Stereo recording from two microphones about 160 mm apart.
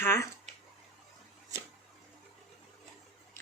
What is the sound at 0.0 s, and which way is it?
Speech, 15° left (ahead or behind).